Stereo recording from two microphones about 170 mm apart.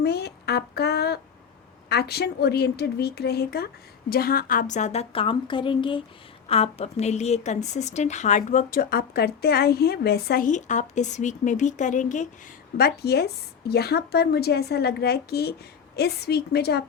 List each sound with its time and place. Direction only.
0.0 s a woman's voice: 70° left (ahead or behind); by 12.3 s 45° left (ahead or behind)
12.7 s a woman's voice: 70° left (ahead or behind)